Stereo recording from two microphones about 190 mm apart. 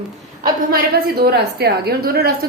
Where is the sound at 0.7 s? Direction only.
55° right (ahead or behind).